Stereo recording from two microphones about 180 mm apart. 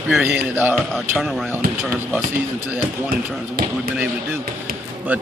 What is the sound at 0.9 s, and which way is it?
Speech, centre (ahead or behind).